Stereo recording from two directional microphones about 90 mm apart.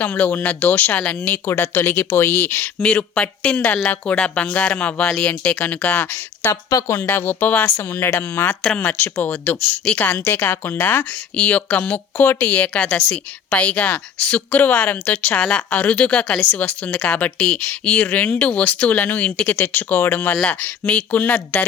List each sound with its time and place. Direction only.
0.0 s speech: 20° left (ahead or behind)
1.5 s speech: 25° left (ahead or behind)
6.7 s speech: 35° left (ahead or behind); by 21.7 s 20° left (ahead or behind)